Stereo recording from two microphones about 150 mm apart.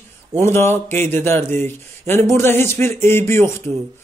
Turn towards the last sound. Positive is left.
turn(degrees=15)  # may be behind; listen again after turning